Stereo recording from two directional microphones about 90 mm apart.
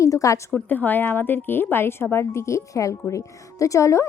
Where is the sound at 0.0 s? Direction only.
35° left (ahead or behind).